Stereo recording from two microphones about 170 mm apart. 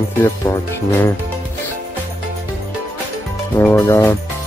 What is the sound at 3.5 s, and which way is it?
Speech, 15° left (ahead or behind).